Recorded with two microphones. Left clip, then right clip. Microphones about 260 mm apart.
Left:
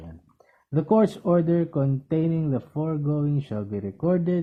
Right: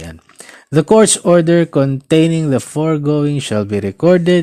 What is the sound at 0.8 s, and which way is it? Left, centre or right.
Speech, right.